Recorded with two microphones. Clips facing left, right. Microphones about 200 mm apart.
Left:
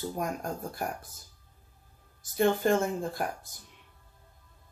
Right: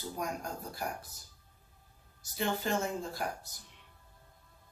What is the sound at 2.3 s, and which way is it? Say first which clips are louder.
Speech: left 8 dB; 55° left (ahead or behind).